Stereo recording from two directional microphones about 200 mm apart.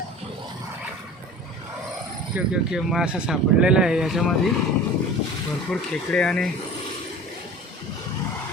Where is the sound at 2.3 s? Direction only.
5° right (ahead or behind).